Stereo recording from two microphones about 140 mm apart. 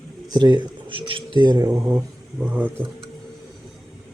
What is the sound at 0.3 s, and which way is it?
Speech, 30° right (ahead or behind).